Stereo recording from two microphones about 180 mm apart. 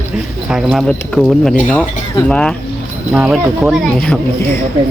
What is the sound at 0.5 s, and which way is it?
Speech, centre (ahead or behind).